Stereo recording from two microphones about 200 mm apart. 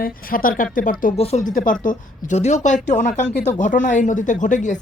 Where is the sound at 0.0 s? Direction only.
45° left (ahead or behind).